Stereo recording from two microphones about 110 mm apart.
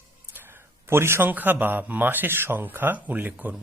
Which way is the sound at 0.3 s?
20° right (ahead or behind).